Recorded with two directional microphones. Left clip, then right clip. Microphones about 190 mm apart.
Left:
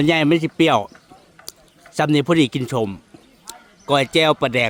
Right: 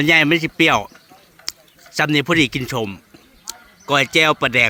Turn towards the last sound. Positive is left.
turn(degrees=15)  # may be behind; listen again after turning